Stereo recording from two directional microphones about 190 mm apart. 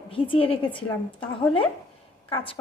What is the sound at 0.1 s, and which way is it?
Speech, 30° left (ahead or behind).